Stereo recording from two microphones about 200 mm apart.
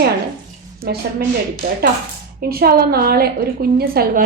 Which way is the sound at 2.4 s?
50° right (ahead or behind).